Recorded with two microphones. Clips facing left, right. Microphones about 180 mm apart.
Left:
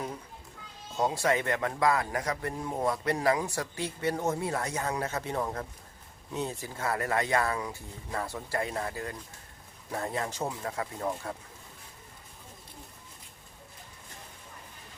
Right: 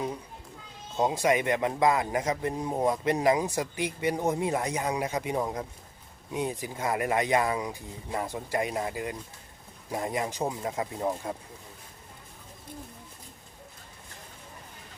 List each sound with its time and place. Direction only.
0.9 s speech: 20° right (ahead or behind)